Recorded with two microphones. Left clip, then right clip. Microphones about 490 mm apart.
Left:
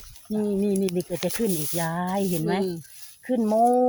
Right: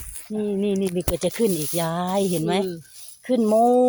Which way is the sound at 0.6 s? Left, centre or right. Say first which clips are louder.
Right 2 dB; left.